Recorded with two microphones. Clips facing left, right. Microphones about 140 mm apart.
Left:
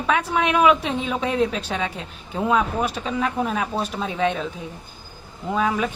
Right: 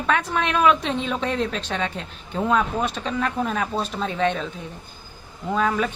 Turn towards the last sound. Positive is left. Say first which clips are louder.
# even
turn(degrees=5)  # may be behind; listen again after turning